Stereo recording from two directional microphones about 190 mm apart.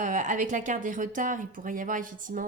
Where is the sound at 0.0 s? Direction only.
40° right (ahead or behind).